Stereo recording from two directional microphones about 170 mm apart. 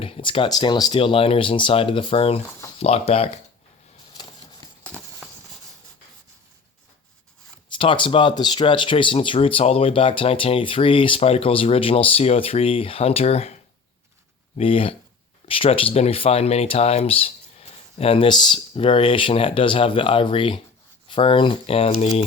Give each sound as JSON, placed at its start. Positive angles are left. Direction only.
{"t": 0.0, "sound": "speech", "side_deg": 30}
{"t": 4.1, "sound": "a sound", "side_deg": 25}
{"t": 7.8, "sound": "speech", "side_deg": 30}
{"t": 14.6, "sound": "speech", "side_deg": 35}